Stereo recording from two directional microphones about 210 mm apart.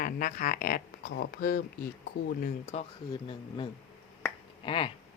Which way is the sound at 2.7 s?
30° left (ahead or behind).